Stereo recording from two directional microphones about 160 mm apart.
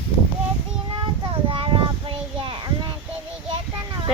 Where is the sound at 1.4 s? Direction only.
35° right (ahead or behind).